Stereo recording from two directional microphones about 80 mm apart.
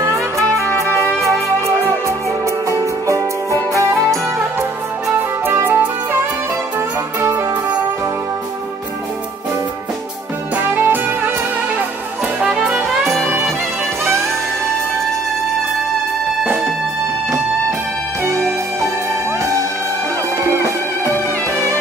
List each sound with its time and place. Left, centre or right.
0.0 s music: right
1.9 s music: right
4.6 s music: right
7.2 s music: right
10.5 s music: right
12.4 s music: centre
13.2 s music: right
18.2 s music: right